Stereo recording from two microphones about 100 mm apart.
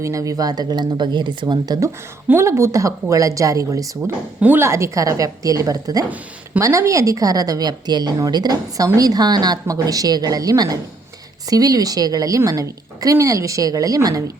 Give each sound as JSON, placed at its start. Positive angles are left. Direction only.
{"t": 0.0, "sound": "speech", "side_deg": -35}
{"t": 2.2, "sound": "a woman's voice", "side_deg": -25}
{"t": 4.4, "sound": "a woman's voice", "side_deg": -20}